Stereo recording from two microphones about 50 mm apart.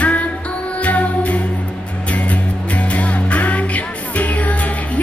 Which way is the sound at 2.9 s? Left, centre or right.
Left.